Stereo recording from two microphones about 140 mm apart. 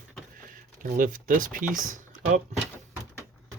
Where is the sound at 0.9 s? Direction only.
75° right (ahead or behind).